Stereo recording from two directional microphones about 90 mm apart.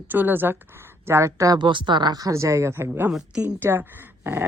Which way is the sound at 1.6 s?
60° right (ahead or behind).